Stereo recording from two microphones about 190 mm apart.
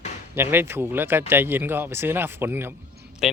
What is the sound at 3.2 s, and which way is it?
Speech, centre (ahead or behind).